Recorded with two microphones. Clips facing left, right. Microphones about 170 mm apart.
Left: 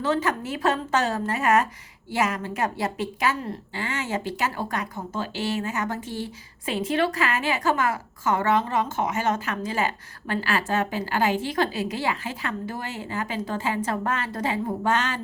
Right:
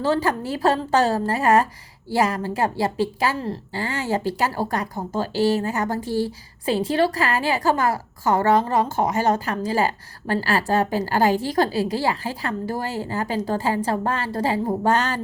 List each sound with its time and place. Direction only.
0.0 s a woman's voice: 35° right (ahead or behind)